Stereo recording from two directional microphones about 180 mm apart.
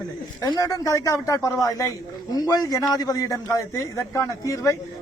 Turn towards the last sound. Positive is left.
turn(degrees=20)  # may be behind; listen again after turning